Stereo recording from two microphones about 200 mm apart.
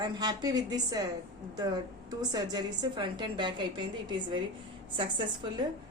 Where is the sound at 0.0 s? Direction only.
20° right (ahead or behind).